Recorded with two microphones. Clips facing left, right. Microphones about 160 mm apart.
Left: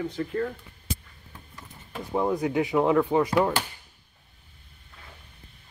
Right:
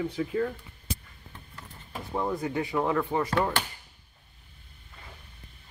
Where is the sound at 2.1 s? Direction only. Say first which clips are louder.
Left 5 dB; 15° left (ahead or behind).